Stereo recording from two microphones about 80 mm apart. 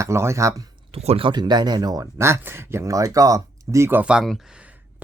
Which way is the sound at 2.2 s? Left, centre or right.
Right.